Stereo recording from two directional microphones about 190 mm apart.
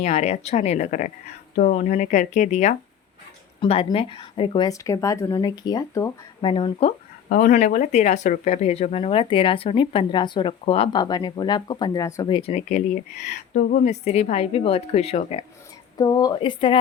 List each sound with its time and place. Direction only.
0.0 s speech: 35° left (ahead or behind)
3.6 s speech: 25° left (ahead or behind)
7.3 s speech: 40° left (ahead or behind)
16.0 s speech: 20° left (ahead or behind)